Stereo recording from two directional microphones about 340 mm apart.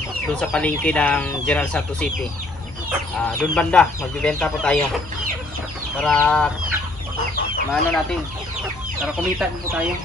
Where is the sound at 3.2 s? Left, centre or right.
Centre.